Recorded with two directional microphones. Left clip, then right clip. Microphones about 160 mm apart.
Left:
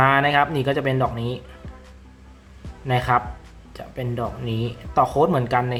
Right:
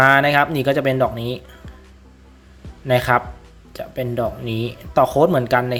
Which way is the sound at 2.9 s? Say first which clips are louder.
Right 4 dB; 30° right (ahead or behind).